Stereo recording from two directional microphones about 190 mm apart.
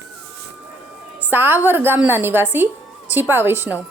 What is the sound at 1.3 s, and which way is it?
A woman's voice, 10° right (ahead or behind).